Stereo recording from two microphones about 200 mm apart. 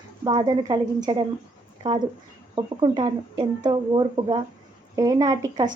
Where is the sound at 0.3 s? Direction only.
20° right (ahead or behind).